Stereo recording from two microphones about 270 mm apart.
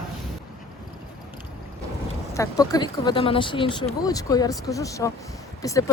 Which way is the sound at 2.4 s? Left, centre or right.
Centre.